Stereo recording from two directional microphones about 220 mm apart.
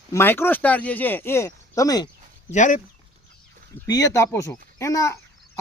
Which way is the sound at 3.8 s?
15° left (ahead or behind).